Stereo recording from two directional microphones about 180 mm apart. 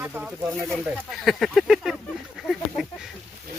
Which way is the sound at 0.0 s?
5° right (ahead or behind).